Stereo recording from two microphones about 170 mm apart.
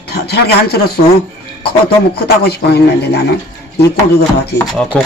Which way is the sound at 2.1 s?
70° left (ahead or behind).